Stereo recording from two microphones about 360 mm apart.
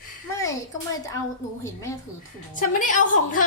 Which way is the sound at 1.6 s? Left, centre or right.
Centre.